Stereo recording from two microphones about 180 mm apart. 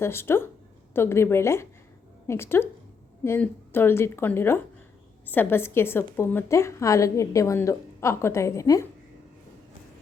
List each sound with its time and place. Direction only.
0.0 s a woman's voice: 15° left (ahead or behind)